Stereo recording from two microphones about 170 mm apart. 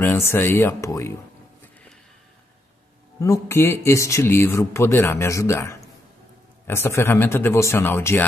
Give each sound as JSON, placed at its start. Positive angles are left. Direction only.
{"t": 0.0, "sound": "speech", "side_deg": 15}
{"t": 3.2, "sound": "speech", "side_deg": 15}